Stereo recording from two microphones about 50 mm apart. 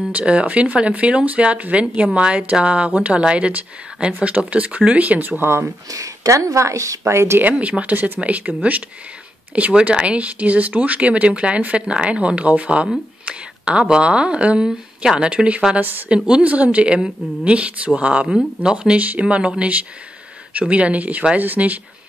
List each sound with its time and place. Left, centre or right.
0.1 s speech: right
5.4 s speech: right
7.5 s speech: right
9.6 s speech: right